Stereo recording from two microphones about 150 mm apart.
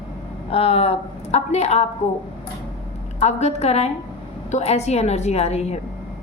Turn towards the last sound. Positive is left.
turn(degrees=45)  # may be behind; listen again after turning